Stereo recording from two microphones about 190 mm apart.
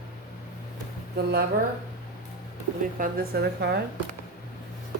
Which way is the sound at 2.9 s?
45° right (ahead or behind).